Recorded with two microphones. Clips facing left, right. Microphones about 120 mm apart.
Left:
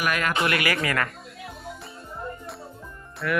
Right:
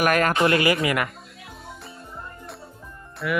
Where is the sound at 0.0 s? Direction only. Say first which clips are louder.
Right 6 dB; 45° right (ahead or behind).